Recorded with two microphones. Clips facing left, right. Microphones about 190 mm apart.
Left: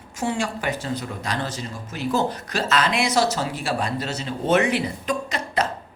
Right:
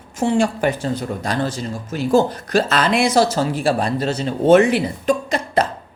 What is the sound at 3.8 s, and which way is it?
Speech, 30° right (ahead or behind).